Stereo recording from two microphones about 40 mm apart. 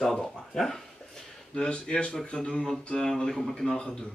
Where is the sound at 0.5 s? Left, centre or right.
Centre.